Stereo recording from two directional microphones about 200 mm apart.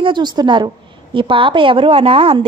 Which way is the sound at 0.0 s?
20° right (ahead or behind).